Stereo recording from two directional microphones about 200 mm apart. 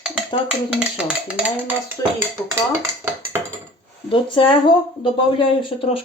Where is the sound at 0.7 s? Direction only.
5° right (ahead or behind).